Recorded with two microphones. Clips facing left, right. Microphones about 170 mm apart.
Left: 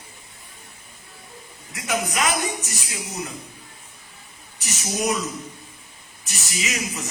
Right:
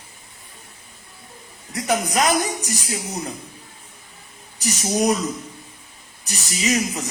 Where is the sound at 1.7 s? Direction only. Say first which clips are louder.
Right 4 dB; 35° right (ahead or behind).